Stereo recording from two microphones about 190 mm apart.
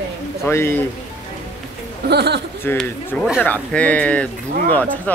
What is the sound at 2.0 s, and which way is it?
Speech, 60° right (ahead or behind).